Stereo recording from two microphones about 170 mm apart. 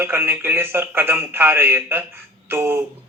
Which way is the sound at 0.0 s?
15° right (ahead or behind).